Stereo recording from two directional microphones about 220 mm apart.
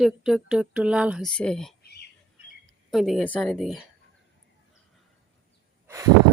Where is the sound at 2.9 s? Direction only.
Centre (ahead or behind).